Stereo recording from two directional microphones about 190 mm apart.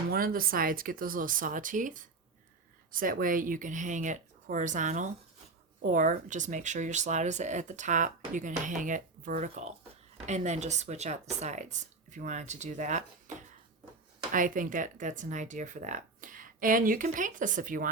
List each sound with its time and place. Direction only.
0.1 s speech: 50° right (ahead or behind)